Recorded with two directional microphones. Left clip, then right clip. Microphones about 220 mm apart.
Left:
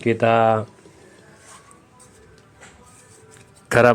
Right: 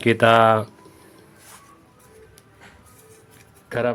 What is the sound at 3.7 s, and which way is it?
Speech, 30° left (ahead or behind).